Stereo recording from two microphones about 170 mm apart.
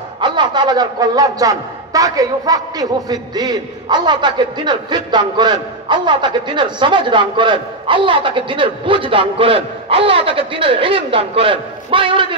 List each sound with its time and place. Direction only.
0.2 s a man's voice: 25° right (ahead or behind)